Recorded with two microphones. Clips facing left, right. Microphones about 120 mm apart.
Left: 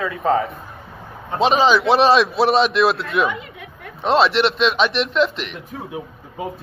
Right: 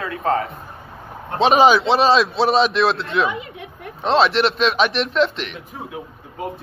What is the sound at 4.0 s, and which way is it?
A man's voice, centre (ahead or behind).